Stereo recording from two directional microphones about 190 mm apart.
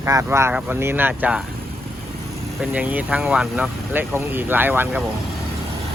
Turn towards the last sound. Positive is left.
turn(degrees=-10)  # may be behind; listen again after turning